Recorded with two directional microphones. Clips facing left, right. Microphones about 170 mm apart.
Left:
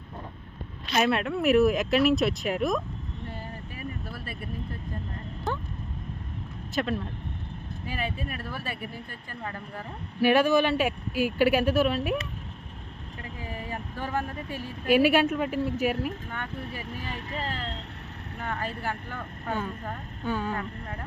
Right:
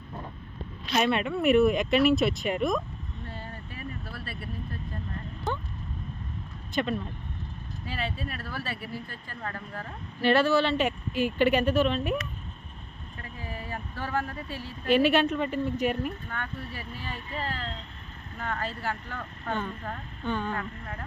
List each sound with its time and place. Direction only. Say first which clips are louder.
0.9 s speech: left 1 dB; centre (ahead or behind)
4.1 s vehicle: left 1 dB; 15° left (ahead or behind)
5.5 s a sound: even; centre (ahead or behind)
6.7 s speech: even; centre (ahead or behind)
7.9 s speech: left 1 dB; 15° left (ahead or behind)
13.4 s a woman's voice: left 1 dB; 15° left (ahead or behind)
18.3 s speech: even; 15° left (ahead or behind)